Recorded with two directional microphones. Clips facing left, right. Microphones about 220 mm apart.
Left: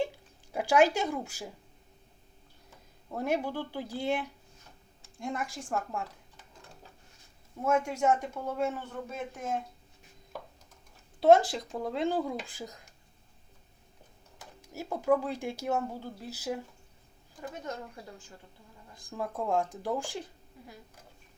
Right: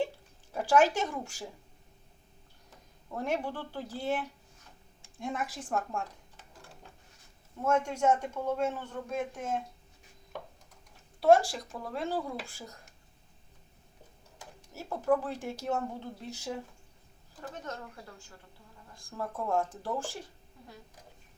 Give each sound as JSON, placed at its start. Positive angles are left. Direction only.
{"t": 0.5, "sound": "speech", "side_deg": 10}
{"t": 3.1, "sound": "speech", "side_deg": 10}
{"t": 5.1, "sound": "a woman's voice", "side_deg": 0}
{"t": 7.6, "sound": "speech", "side_deg": 10}
{"t": 11.2, "sound": "speech", "side_deg": 20}
{"t": 14.6, "sound": "speech", "side_deg": 15}